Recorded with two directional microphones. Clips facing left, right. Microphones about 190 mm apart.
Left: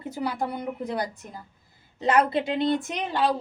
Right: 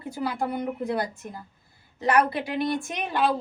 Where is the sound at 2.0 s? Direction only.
20° left (ahead or behind).